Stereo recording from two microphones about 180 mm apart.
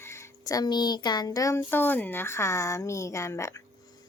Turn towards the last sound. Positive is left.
turn(degrees=15)  # may be behind; listen again after turning